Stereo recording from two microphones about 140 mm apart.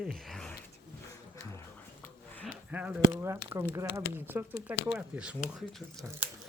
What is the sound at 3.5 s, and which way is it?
Speech, 20° right (ahead or behind).